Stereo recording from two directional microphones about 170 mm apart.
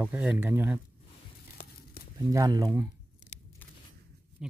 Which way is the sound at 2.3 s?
20° right (ahead or behind).